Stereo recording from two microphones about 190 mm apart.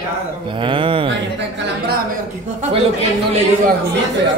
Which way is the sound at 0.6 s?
25° right (ahead or behind).